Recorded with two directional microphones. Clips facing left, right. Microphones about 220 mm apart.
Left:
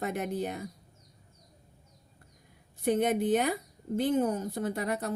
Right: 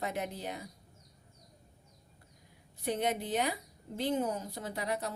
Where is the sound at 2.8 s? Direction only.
50° left (ahead or behind).